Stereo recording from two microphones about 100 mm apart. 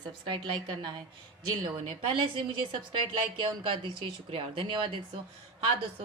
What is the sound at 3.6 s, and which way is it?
Speech, 60° right (ahead or behind).